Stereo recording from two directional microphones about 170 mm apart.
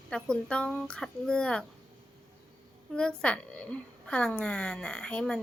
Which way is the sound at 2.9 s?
5° left (ahead or behind).